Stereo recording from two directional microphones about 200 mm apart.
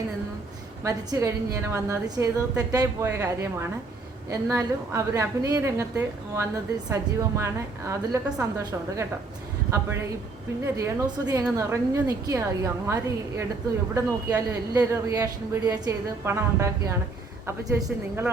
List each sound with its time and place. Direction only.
0.9 s a man's voice: 15° right (ahead or behind)